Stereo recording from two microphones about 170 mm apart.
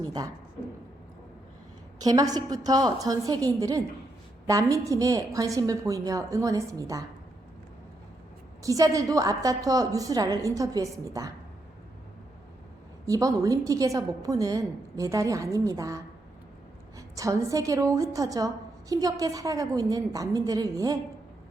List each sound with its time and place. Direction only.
0.0 s a sound: 20° right (ahead or behind)
2.0 s a woman's voice: 20° right (ahead or behind)
8.6 s a woman's voice: 20° right (ahead or behind)
13.1 s a woman's voice: 20° right (ahead or behind)
17.2 s a woman's voice: 20° right (ahead or behind)